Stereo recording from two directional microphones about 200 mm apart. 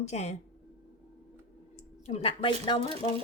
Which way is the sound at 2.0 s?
30° left (ahead or behind).